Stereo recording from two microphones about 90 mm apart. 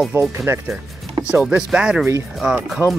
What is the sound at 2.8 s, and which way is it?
Speech, 35° left (ahead or behind).